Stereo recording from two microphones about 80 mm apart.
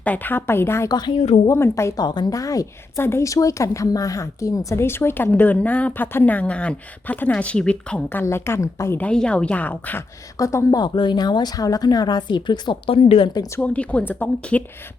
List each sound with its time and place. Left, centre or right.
0.0 s a woman's voice: left
0.9 s a woman's voice: left
1.5 s a woman's voice: left
2.0 s a woman's voice: left; by 8.0 s centre
8.1 s a woman's voice: left
9.0 s a woman's voice: centre
10.3 s a woman's voice: left
10.8 s a woman's voice: left
13.6 s a woman's voice: centre